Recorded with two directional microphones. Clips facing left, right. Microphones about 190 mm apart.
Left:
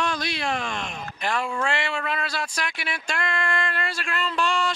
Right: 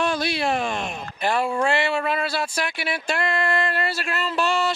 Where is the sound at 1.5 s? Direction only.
35° right (ahead or behind).